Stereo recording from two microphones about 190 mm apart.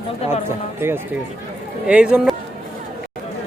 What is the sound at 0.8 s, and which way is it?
Speech, 10° right (ahead or behind).